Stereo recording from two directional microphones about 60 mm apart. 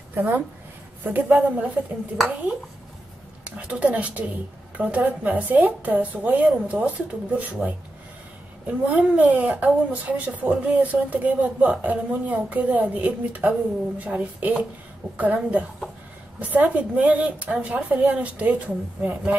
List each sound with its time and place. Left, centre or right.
0.1 s a woman's voice: right
3.4 s speech: right